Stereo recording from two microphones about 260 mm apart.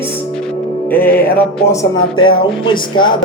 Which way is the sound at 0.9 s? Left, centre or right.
Centre.